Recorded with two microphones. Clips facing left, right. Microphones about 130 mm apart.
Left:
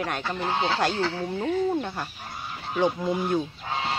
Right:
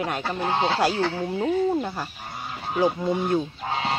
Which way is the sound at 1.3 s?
10° right (ahead or behind).